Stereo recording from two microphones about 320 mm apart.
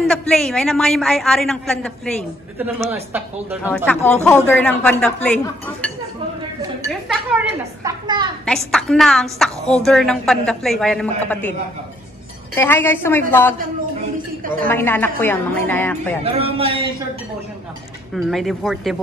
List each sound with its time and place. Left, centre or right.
0.0 s a woman's voice: centre
6.9 s speech: centre
8.5 s a woman's voice: centre
12.5 s a woman's voice: centre
14.4 s a sound: right
14.7 s a woman's voice: centre
16.5 s speech: centre
18.1 s a woman's voice: centre